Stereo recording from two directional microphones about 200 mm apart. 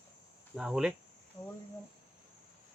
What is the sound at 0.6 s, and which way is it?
Speech, 5° right (ahead or behind).